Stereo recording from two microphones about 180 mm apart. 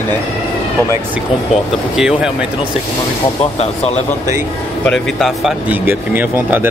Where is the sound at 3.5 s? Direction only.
35° left (ahead or behind).